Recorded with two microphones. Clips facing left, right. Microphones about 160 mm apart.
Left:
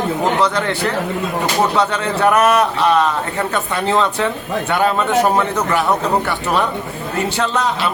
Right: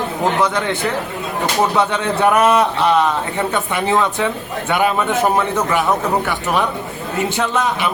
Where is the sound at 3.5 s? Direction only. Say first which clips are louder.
Even; 15° right (ahead or behind).